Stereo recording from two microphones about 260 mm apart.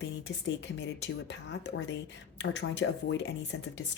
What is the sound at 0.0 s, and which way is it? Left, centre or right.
Speech, left.